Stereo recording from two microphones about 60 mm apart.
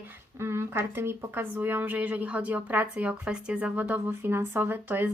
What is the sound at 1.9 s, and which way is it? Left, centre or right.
A woman's voice, right.